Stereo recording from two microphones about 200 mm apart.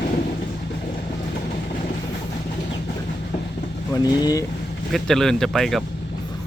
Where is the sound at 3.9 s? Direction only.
20° left (ahead or behind).